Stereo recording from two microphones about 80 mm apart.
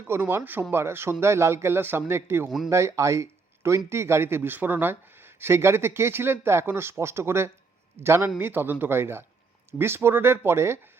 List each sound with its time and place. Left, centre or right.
0.1 s speech: right